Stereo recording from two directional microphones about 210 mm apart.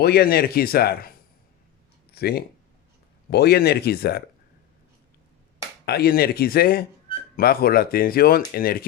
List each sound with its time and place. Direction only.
0.0 s speech: 50° left (ahead or behind)
2.1 s speech: 50° left (ahead or behind)
5.8 s speech: 50° left (ahead or behind)